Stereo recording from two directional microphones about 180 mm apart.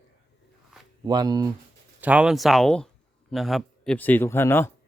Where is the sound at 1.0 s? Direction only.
20° right (ahead or behind).